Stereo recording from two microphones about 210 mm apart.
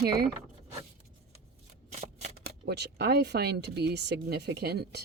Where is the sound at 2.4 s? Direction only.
50° right (ahead or behind).